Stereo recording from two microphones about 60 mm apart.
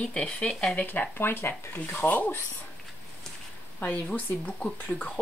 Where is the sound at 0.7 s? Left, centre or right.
Left.